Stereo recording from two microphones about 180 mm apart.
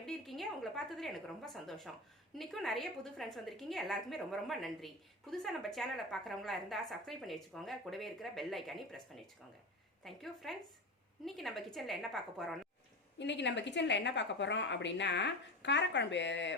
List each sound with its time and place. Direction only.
0.0 s a woman's voice: centre (ahead or behind)
13.1 s a woman's voice: 80° left